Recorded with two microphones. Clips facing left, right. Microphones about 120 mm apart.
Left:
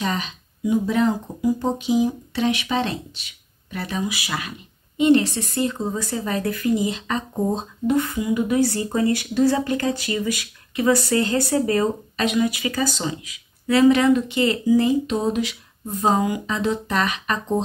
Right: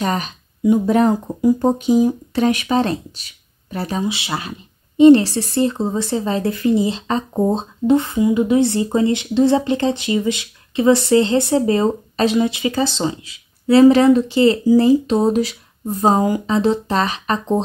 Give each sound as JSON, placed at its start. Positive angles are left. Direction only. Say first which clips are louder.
{"t": 0.0, "sound": "speech", "louder": "right 4 dB", "side_deg": -45}